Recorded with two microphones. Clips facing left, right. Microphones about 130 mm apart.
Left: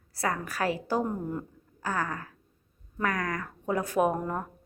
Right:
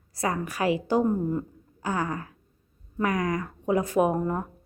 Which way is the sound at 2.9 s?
15° right (ahead or behind).